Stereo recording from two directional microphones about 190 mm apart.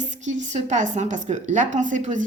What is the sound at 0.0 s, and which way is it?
Speech, 40° right (ahead or behind).